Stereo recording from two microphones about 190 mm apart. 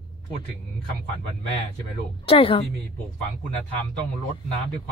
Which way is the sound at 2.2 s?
30° left (ahead or behind).